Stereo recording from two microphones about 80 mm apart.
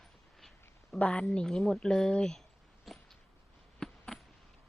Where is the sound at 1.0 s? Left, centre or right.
Centre.